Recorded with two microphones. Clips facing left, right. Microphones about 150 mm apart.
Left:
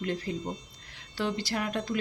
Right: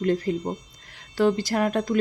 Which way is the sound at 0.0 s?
45° right (ahead or behind).